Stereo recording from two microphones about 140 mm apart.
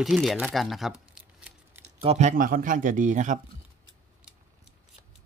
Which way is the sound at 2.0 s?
50° right (ahead or behind).